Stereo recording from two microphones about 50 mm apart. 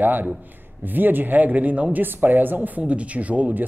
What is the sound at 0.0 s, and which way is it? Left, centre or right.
Speech, right.